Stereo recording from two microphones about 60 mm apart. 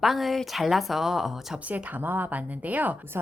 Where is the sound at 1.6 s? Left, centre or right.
Right.